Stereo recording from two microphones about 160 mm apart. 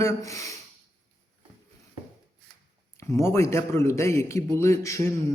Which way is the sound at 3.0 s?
15° left (ahead or behind).